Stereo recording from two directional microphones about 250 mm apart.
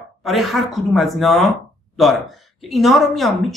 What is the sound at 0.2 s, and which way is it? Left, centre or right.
A woman's voice, centre.